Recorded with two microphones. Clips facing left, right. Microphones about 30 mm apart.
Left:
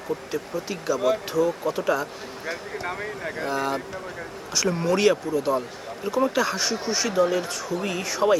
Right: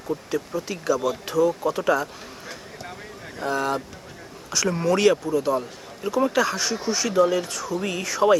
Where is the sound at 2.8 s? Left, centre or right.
Left.